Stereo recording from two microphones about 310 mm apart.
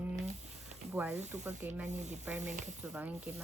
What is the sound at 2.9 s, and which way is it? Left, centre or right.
Speech, centre.